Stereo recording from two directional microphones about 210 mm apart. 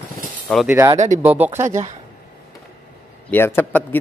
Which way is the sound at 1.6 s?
35° right (ahead or behind).